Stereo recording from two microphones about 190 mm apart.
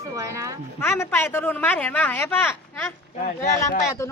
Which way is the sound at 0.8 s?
15° left (ahead or behind).